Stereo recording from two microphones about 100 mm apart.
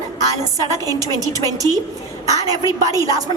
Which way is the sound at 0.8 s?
40° right (ahead or behind).